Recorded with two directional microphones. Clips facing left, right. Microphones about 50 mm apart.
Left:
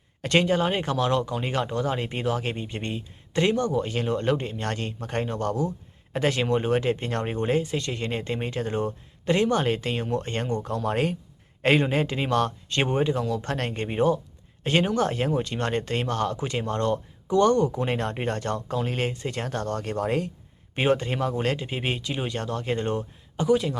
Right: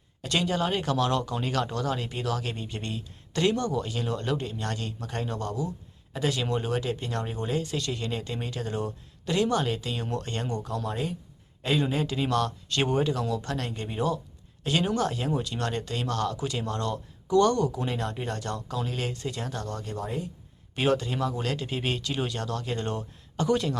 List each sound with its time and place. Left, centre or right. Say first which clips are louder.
0.2 s speech: left 5 dB; left
10.8 s speech: left 6 dB; left
17.8 s speech: left 4 dB; left
20.7 s speech: left 2 dB; left
21.6 s speech: left 1 dB; left
22.3 s speech: left 3 dB; left
23.4 s speech: left 3 dB; centre